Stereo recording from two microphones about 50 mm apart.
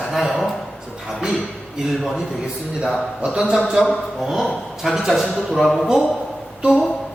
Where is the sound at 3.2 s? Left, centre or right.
Right.